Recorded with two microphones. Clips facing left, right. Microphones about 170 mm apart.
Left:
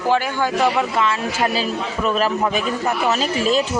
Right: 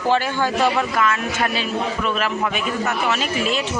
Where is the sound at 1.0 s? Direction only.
30° left (ahead or behind).